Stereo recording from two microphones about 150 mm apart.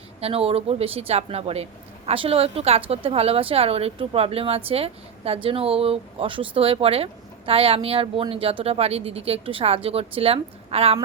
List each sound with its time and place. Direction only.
0.2 s a woman's voice: 40° right (ahead or behind)